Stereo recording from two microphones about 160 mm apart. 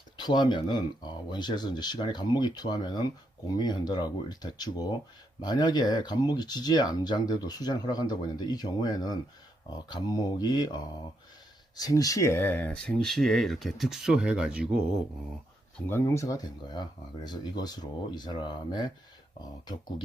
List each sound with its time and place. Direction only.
0.2 s speech: 25° left (ahead or behind)
11.8 s speech: 20° left (ahead or behind); by 14.8 s 5° right (ahead or behind)
15.9 s speech: 15° left (ahead or behind)